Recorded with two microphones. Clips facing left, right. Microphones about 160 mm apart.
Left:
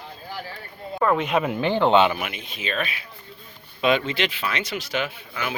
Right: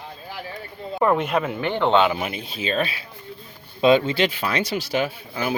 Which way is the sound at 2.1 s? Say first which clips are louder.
Right 4 dB; 30° right (ahead or behind).